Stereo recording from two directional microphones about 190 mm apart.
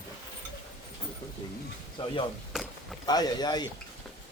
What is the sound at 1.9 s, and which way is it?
Speech, 25° left (ahead or behind).